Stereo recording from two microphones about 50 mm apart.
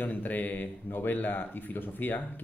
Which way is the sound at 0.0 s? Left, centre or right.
Left.